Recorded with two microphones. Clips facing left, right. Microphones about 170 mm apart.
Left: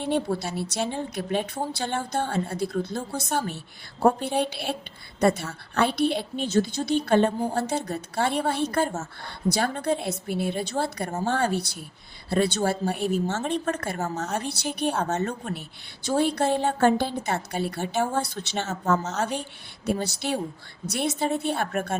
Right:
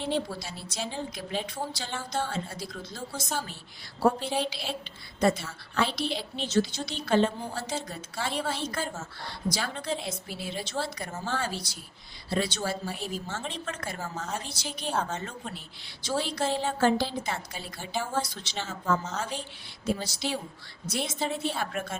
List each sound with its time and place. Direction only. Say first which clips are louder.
0.1 s a woman's voice: left 8 dB; 60° left (ahead or behind)
13.4 s a woman's voice: left 9 dB; 55° left (ahead or behind)
15.0 s a woman's voice: left 8 dB; 45° left (ahead or behind)
16.1 s a woman's voice: left 6 dB; 55° left (ahead or behind)
19.9 s a woman's voice: left 4 dB; 60° left (ahead or behind)